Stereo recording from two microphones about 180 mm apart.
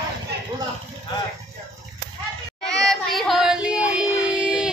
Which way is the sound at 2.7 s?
Centre (ahead or behind).